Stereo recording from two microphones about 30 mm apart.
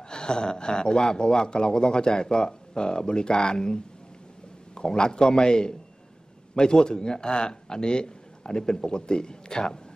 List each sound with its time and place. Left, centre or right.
0.1 s a man's voice: left